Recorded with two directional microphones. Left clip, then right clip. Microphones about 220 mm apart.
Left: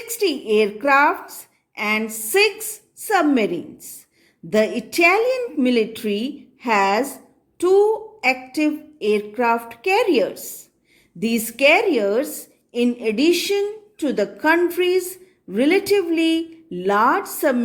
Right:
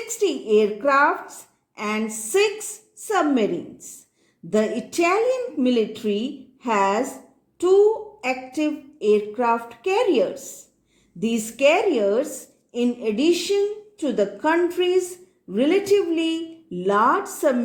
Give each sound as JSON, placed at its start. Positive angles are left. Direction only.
{"t": 0.2, "sound": "speech", "side_deg": 25}